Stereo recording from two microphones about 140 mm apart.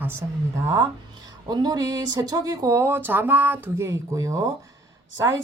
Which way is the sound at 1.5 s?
30° right (ahead or behind).